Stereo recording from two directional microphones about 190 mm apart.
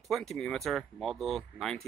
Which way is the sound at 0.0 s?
Centre (ahead or behind).